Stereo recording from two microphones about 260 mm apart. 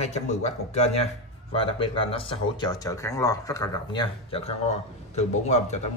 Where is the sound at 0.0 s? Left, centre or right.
Left.